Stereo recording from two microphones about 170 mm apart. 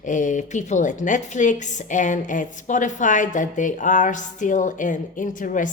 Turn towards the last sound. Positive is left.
turn(degrees=50)  # may be behind; listen again after turning